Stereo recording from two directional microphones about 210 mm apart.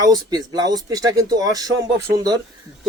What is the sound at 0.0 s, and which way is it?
Speech, 20° right (ahead or behind).